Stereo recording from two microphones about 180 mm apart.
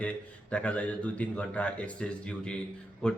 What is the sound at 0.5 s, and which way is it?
A man's voice, 5° left (ahead or behind).